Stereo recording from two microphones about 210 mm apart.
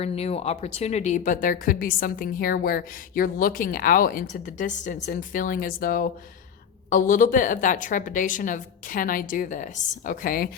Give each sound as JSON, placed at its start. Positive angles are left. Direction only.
{"t": 0.0, "sound": "speech", "side_deg": 30}